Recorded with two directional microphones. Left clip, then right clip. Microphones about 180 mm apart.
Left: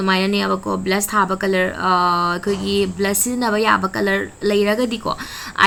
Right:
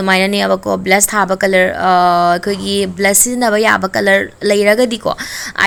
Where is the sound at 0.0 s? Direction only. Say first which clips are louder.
Right 6 dB; 30° right (ahead or behind).